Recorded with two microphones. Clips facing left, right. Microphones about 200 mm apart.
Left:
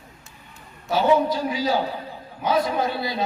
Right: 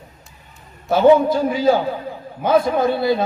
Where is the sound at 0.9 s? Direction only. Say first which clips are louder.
Right 7 dB; 50° right (ahead or behind).